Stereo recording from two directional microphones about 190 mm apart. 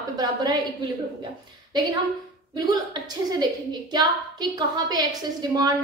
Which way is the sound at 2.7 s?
20° right (ahead or behind).